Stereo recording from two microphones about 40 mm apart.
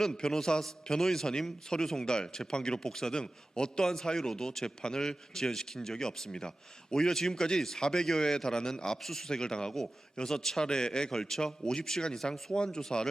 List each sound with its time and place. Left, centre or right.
0.0 s speech: centre